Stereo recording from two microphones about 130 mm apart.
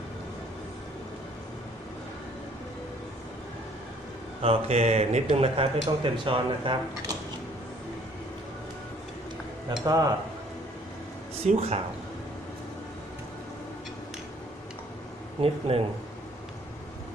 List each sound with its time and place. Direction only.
4.4 s speech: 55° right (ahead or behind)
9.8 s speech: 25° right (ahead or behind)
11.4 s speech: 50° right (ahead or behind)
15.4 s speech: 50° right (ahead or behind)